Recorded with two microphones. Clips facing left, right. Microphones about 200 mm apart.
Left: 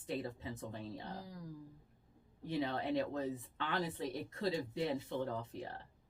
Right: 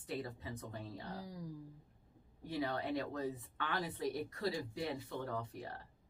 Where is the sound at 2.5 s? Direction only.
25° left (ahead or behind).